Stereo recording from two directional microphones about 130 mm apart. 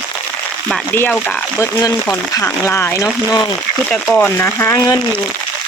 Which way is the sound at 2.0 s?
15° left (ahead or behind).